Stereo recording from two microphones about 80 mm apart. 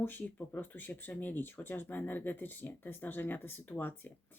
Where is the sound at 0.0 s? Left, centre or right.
Left.